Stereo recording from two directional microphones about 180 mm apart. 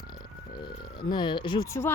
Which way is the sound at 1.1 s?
25° left (ahead or behind).